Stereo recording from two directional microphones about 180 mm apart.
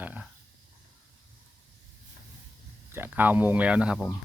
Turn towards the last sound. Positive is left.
turn(degrees=-5)  # may be behind; listen again after turning